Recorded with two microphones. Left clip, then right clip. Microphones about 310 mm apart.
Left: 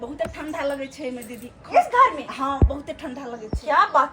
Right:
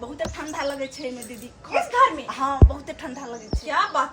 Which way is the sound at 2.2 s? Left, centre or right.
Centre.